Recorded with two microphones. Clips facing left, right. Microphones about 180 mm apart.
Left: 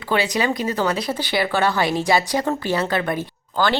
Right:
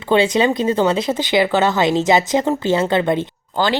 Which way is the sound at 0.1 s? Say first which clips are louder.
Right 6 dB; 25° right (ahead or behind).